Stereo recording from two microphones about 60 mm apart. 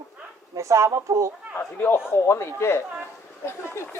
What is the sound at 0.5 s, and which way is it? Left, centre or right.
Speech, right.